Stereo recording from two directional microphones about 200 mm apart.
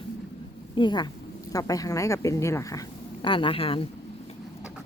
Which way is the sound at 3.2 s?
25° left (ahead or behind).